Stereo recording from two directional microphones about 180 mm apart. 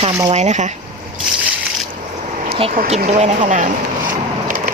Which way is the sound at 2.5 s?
35° right (ahead or behind).